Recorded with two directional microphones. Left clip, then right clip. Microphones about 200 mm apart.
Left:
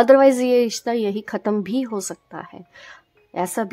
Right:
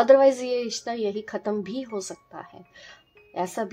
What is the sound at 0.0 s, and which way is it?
A woman's voice, 40° left (ahead or behind).